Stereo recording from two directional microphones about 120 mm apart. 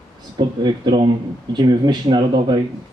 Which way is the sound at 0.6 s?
35° right (ahead or behind).